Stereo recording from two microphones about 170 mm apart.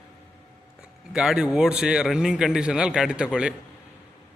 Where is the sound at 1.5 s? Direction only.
5° right (ahead or behind).